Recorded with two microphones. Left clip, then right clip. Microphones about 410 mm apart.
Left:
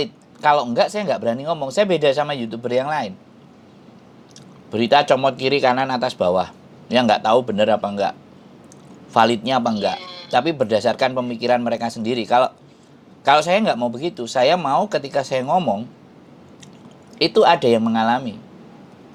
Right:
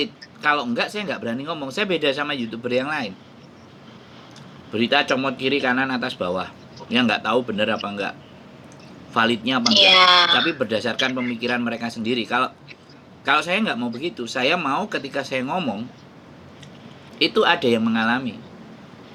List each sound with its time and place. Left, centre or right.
0.0 s speech: centre
4.7 s speech: left
9.1 s speech: left
9.7 s speech: right
10.3 s speech: centre
17.2 s speech: centre